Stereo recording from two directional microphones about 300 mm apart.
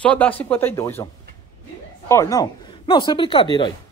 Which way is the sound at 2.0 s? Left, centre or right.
Centre.